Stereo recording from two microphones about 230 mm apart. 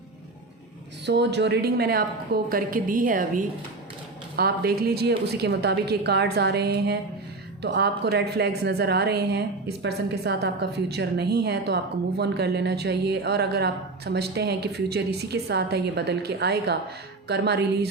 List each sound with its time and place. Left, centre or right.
1.0 s a woman's voice: right